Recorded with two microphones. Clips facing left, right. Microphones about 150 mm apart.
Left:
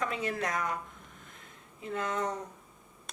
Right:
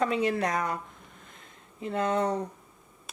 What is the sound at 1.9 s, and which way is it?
Speech, 35° right (ahead or behind).